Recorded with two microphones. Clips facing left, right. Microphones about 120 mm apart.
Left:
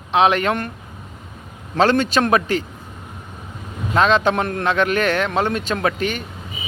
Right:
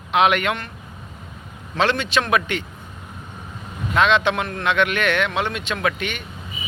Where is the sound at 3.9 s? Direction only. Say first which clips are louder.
Left 2 dB; 40° left (ahead or behind).